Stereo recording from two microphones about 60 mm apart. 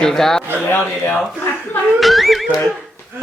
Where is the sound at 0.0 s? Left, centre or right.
Centre.